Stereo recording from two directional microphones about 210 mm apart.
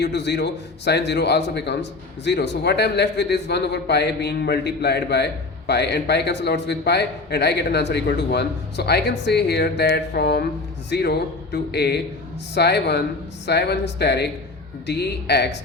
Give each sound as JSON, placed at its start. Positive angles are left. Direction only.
{"t": 0.0, "sound": "a man's voice", "side_deg": 55}